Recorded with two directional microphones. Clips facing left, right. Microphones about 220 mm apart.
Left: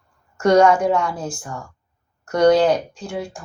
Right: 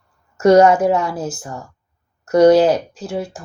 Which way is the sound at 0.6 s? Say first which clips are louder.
Even; 20° right (ahead or behind).